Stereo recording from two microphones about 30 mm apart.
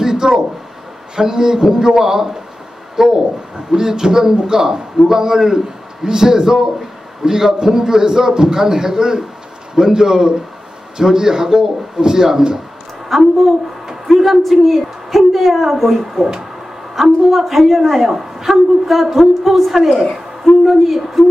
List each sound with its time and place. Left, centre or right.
0.0 s a sound: right
1.1 s a man's voice: right
13.1 s a woman's voice: centre